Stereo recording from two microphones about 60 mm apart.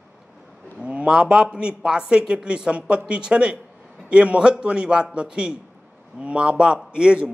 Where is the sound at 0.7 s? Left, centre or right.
Right.